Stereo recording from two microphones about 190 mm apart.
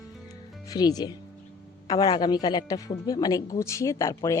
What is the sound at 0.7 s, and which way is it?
A woman's voice, 20° left (ahead or behind).